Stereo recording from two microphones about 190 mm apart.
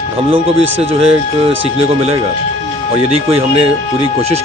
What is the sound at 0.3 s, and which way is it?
Speech, 30° right (ahead or behind).